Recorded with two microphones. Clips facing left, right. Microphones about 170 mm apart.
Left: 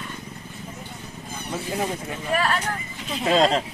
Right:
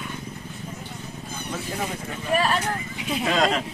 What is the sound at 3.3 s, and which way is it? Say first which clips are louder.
Speech: left 4 dB; 30° left (ahead or behind).